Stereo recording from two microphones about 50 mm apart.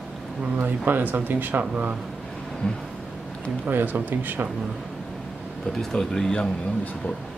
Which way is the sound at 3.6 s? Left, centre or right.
Right.